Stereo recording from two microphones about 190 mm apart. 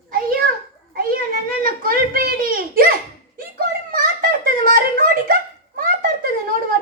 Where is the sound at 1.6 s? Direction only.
50° right (ahead or behind).